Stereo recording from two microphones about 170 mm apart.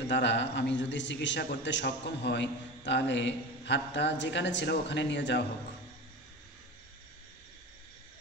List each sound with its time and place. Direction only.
0.0 s a man's voice: 90° left